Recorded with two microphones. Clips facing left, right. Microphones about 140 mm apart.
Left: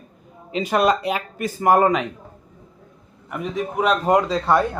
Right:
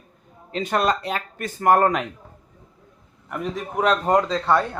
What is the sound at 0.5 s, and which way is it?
Speech, 5° left (ahead or behind).